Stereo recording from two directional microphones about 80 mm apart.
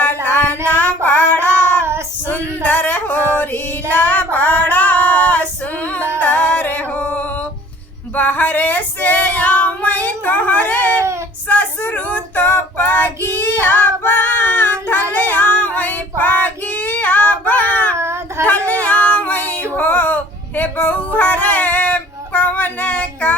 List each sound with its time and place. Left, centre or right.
0.0 s a sound: left
0.7 s child singing: left
2.3 s female singing: left
6.1 s music: centre
8.1 s female singing: left
15.1 s child singing: left
17.9 s child singing: right
18.4 s female singing: left
20.6 s a sound: left